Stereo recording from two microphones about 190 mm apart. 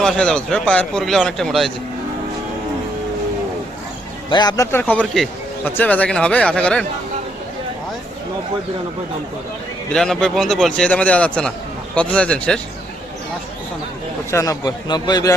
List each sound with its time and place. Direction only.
0.0 s a man's voice: 5° left (ahead or behind)
4.3 s a man's voice: 20° left (ahead or behind); by 6.8 s 5° left (ahead or behind)
9.9 s a man's voice: 5° left (ahead or behind)
14.3 s a man's voice: 15° left (ahead or behind)